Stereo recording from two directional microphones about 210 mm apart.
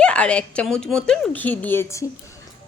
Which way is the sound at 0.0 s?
5° left (ahead or behind).